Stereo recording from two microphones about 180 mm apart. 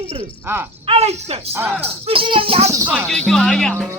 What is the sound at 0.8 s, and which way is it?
Speech, 35° right (ahead or behind).